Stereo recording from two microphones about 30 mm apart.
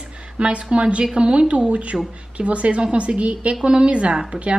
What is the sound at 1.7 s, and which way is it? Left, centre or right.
A woman's voice, right.